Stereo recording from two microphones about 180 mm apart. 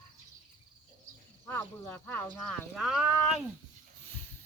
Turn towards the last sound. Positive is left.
turn(degrees=-5)  # may be behind; listen again after turning